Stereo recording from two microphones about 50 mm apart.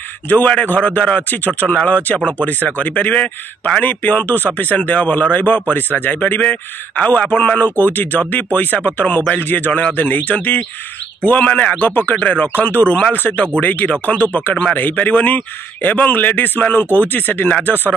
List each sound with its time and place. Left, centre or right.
0.3 s speech: left
3.8 s speech: left
9.7 s speech: left
11.8 s speech: left